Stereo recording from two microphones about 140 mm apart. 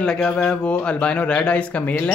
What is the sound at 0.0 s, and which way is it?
Speech, 5° left (ahead or behind).